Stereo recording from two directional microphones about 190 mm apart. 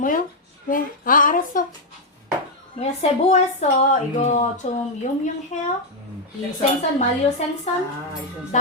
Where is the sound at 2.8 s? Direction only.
35° left (ahead or behind).